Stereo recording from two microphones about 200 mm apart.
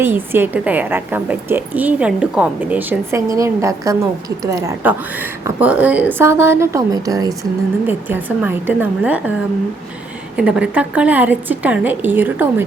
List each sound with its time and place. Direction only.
0.0 s a woman's voice: 10° right (ahead or behind)
10.3 s a woman's voice: 5° right (ahead or behind)